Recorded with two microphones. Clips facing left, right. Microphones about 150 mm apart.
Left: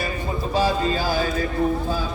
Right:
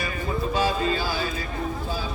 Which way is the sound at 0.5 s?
40° left (ahead or behind).